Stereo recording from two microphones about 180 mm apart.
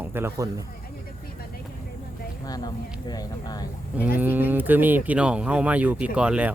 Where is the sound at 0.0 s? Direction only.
10° right (ahead or behind).